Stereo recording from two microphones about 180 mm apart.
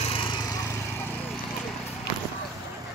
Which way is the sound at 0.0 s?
30° left (ahead or behind).